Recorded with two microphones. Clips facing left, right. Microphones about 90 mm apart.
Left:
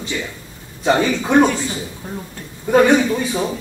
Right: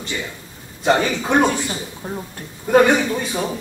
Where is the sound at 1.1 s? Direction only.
15° right (ahead or behind).